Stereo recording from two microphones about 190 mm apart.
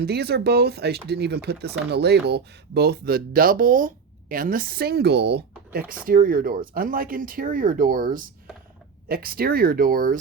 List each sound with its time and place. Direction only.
0.0 s speech: 55° right (ahead or behind)
6.1 s speech: 50° right (ahead or behind)